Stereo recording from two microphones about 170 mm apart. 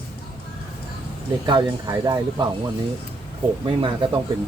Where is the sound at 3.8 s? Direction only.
30° right (ahead or behind).